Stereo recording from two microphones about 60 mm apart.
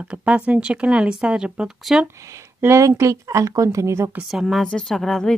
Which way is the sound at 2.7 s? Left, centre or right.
Right.